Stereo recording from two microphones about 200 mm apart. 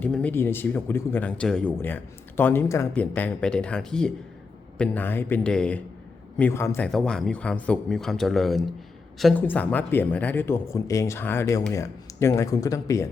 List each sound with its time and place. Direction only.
0.0 s a man's voice: 5° left (ahead or behind)